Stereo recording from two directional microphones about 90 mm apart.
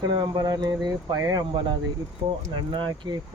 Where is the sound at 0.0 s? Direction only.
50° right (ahead or behind).